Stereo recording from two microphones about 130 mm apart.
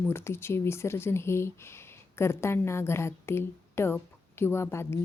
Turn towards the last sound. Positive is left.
turn(degrees=20)  # may be behind; listen again after turning